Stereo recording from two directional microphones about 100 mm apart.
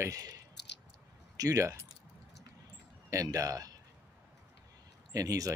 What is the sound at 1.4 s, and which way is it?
Speech, 35° right (ahead or behind).